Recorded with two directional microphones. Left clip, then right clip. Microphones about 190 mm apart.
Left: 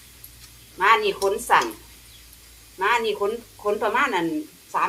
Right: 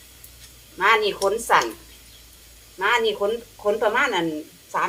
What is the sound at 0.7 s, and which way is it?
Speech, 10° right (ahead or behind).